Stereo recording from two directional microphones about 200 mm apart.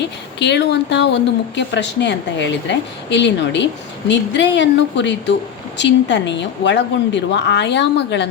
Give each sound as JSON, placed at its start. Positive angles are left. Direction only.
{"t": 0.3, "sound": "speech", "side_deg": 60}